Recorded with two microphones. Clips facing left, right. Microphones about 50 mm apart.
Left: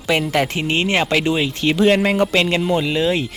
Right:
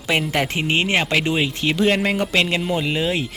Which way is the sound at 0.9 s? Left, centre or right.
Centre.